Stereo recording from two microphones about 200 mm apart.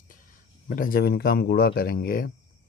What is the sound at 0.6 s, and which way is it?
Speech, 45° left (ahead or behind).